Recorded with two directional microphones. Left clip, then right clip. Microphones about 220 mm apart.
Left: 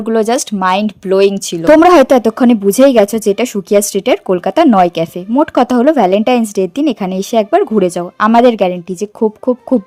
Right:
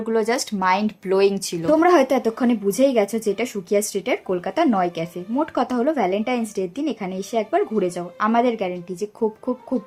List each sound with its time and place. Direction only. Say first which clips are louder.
0.0 s speech: left 8 dB; 40° left (ahead or behind)
1.9 s speech: left 10 dB; 45° left (ahead or behind)